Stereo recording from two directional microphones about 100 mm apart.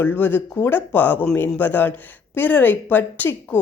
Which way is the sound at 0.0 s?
20° left (ahead or behind).